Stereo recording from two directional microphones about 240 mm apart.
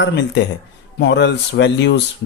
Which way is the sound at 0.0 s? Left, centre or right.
Left.